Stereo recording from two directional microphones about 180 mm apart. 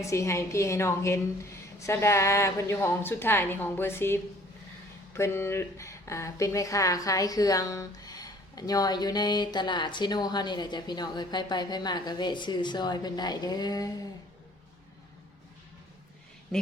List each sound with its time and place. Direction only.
0.0 s a woman's voice: 15° left (ahead or behind)